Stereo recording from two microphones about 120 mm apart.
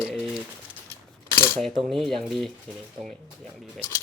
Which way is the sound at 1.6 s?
Centre (ahead or behind).